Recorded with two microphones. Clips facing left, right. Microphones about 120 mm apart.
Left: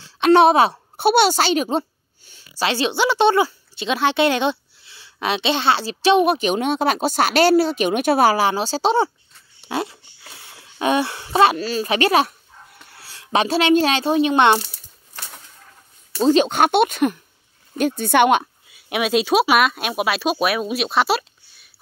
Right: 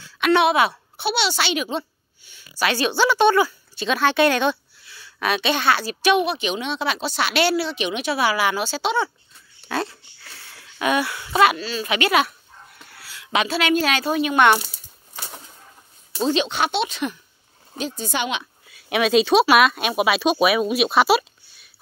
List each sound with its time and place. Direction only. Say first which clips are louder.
0.0 s a sound: left 5 dB; 35° left (ahead or behind)
1.0 s a child's voice: left 7 dB; 50° left (ahead or behind)
2.6 s speech: even; 25° left (ahead or behind)
6.2 s speech: left 6 dB; 45° left (ahead or behind)
9.7 s a sound: left 1 dB; 15° left (ahead or behind)
11.5 s speech: left 4 dB; 40° left (ahead or behind); by 14.6 s 25° left (ahead or behind)
16.3 s speech: left 6 dB; 50° left (ahead or behind)
18.7 s speech: right 1 dB; 5° left (ahead or behind)